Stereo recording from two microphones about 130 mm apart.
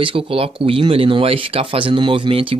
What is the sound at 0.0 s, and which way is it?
Speech, 45° right (ahead or behind).